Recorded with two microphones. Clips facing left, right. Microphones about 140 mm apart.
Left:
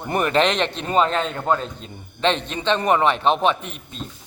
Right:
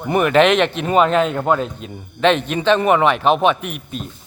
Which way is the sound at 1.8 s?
30° left (ahead or behind).